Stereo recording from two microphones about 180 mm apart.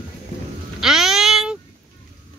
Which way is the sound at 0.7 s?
Centre (ahead or behind).